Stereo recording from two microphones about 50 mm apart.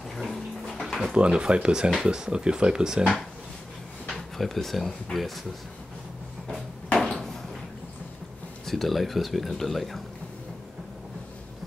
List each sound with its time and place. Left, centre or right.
0.1 s bathtub: centre
1.1 s speech: right
4.4 s speech: centre
7.0 s a sound: centre
8.6 s speech: centre